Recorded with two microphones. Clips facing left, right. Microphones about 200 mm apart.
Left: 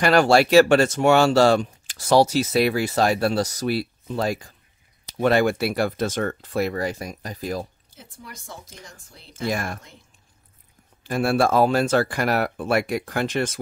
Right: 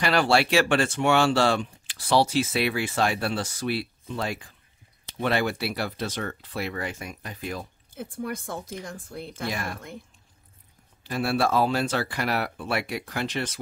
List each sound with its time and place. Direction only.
0.0 s speech: 45° left (ahead or behind)
7.9 s speech: 55° right (ahead or behind)
11.1 s speech: 50° left (ahead or behind)